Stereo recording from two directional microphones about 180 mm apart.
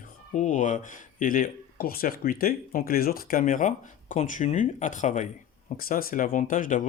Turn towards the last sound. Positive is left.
turn(degrees=50)  # may be behind; listen again after turning